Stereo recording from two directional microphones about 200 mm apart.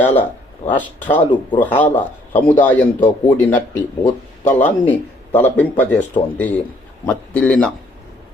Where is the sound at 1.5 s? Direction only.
10° left (ahead or behind).